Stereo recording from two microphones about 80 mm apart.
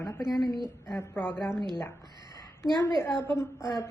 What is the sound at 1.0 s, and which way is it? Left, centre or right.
Speech, left.